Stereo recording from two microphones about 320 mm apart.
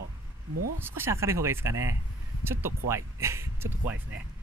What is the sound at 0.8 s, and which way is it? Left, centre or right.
Speech, centre.